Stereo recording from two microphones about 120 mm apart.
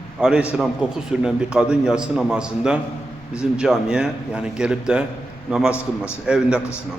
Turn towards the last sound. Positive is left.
turn(degrees=-5)  # may be behind; listen again after turning